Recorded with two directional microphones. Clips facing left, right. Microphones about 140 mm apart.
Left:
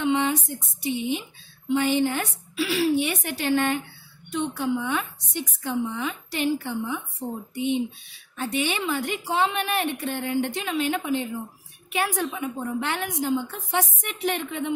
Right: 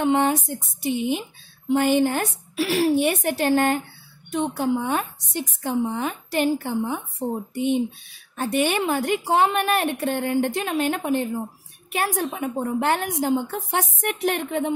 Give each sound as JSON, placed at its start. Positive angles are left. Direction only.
{"t": 0.0, "sound": "a woman's voice", "side_deg": -45}